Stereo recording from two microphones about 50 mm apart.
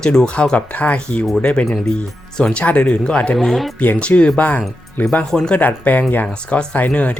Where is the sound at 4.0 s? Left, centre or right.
Left.